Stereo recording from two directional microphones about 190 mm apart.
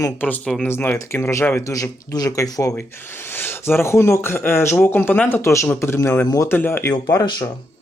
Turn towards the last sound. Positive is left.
turn(degrees=20)  # may be behind; listen again after turning